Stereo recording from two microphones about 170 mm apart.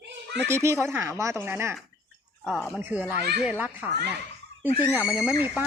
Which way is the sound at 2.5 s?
5° left (ahead or behind).